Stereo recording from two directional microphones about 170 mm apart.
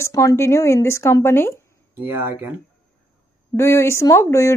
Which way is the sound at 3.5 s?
15° left (ahead or behind).